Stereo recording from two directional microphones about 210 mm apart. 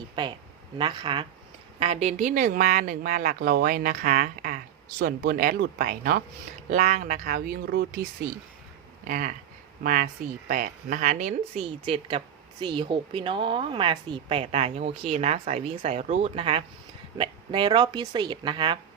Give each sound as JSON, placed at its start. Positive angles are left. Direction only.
{"t": 0.8, "sound": "a woman's voice", "side_deg": -20}
{"t": 9.0, "sound": "a woman's voice", "side_deg": -40}